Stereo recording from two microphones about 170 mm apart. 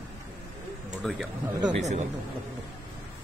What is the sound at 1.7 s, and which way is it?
Speech, 40° right (ahead or behind).